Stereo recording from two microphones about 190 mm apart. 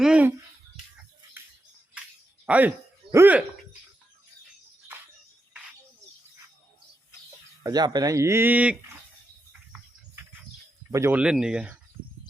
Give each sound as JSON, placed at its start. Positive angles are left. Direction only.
{"t": 0.0, "sound": "speech", "side_deg": -5}
{"t": 2.5, "sound": "a sound", "side_deg": -10}
{"t": 7.6, "sound": "speech", "side_deg": -20}
{"t": 10.9, "sound": "speech", "side_deg": -10}